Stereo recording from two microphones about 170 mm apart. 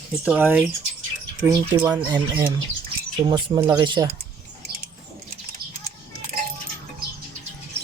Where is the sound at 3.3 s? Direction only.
20° right (ahead or behind).